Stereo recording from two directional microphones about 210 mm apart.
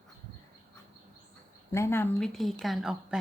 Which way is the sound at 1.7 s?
10° left (ahead or behind).